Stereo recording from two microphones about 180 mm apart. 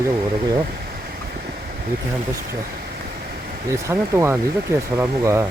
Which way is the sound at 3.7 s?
15° right (ahead or behind).